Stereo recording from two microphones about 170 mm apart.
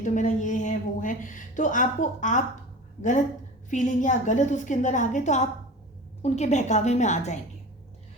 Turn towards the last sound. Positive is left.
turn(degrees=45)  # may be behind; listen again after turning